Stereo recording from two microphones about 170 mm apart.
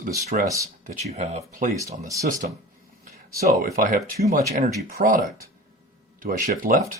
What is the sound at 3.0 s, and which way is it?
Speech, 55° right (ahead or behind).